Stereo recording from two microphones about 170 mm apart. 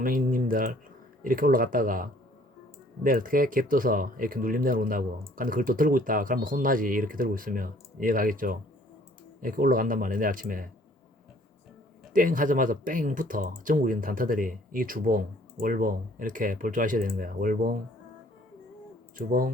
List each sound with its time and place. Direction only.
0.0 s speech: 55° right (ahead or behind)
12.1 s speech: 50° right (ahead or behind)
19.1 s speech: 55° right (ahead or behind)